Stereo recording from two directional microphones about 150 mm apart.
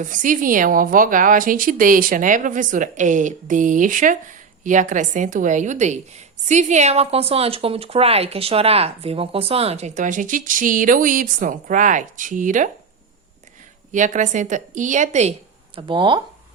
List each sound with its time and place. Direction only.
0.0 s a woman's voice: 60° right (ahead or behind)
13.9 s a woman's voice: 55° right (ahead or behind)
15.9 s speech: 30° right (ahead or behind)